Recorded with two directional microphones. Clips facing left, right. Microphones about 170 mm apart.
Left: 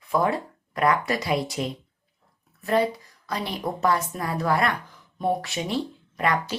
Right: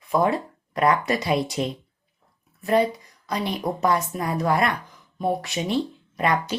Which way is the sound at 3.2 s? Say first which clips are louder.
Right 3 dB; 20° right (ahead or behind).